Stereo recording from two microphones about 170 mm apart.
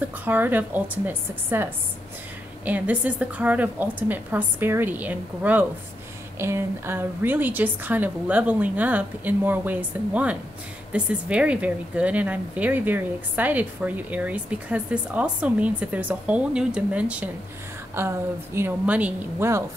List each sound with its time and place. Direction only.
0.0 s a woman's voice: 10° right (ahead or behind)